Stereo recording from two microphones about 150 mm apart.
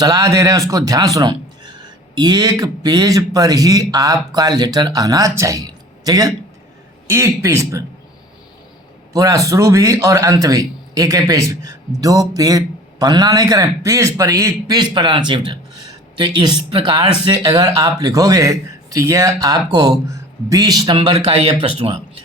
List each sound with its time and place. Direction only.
0.0 s a man's voice: 20° right (ahead or behind)
9.1 s a man's voice: 20° right (ahead or behind); by 21.9 s 40° right (ahead or behind)